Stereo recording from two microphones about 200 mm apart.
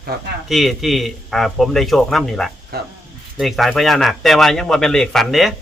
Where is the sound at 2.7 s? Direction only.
50° right (ahead or behind).